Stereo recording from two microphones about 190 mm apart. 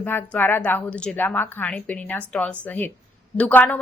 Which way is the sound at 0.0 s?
10° left (ahead or behind).